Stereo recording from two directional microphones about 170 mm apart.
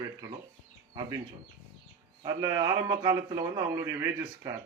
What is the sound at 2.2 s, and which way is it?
Speech, 25° right (ahead or behind).